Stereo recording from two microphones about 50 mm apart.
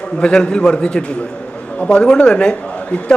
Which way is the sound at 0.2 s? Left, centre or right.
Centre.